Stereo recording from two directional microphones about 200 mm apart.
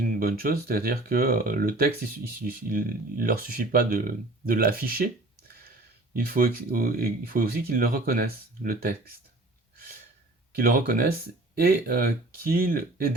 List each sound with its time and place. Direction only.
0.2 s speech: 45° right (ahead or behind)
9.7 s a sound: 45° right (ahead or behind)
10.5 s speech: 45° right (ahead or behind)